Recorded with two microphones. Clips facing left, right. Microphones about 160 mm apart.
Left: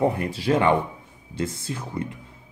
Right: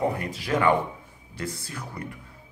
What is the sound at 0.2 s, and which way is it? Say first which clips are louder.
Speech: left 3 dB; 30° left (ahead or behind).